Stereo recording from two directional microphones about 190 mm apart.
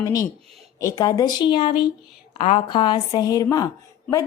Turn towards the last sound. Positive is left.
turn(degrees=15)  # may be behind; listen again after turning